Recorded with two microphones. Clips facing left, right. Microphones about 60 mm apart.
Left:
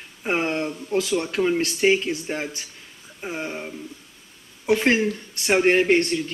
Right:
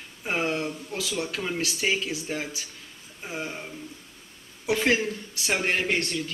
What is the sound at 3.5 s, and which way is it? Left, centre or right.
Speech, centre.